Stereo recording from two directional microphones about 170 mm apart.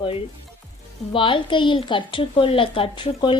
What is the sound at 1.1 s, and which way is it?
A woman's voice, 30° left (ahead or behind).